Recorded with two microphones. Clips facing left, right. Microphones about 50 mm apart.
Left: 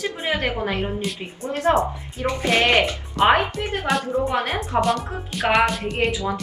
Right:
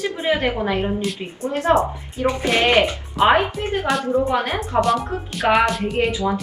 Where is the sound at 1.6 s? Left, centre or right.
Right.